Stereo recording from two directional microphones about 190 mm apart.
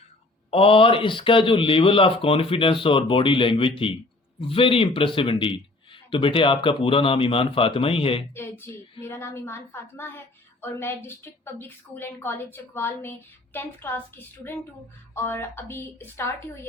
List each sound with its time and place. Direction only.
0.5 s speech: 30° left (ahead or behind)
8.4 s a woman's voice: 10° left (ahead or behind)
15.1 s a woman's voice: 10° left (ahead or behind)